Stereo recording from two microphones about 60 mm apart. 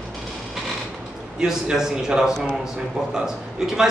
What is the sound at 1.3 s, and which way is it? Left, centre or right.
Speech, centre.